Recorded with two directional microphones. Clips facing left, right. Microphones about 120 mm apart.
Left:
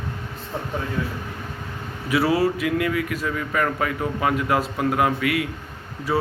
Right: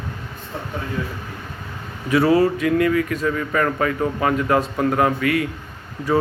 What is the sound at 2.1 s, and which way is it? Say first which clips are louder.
A man's voice: right 4 dB; 10° left (ahead or behind).